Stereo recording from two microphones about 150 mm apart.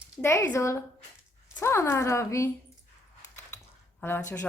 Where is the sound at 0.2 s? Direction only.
15° left (ahead or behind).